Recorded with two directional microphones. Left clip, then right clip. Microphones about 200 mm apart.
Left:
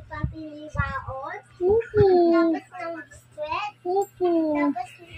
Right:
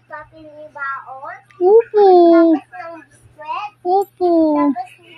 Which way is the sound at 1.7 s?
60° right (ahead or behind).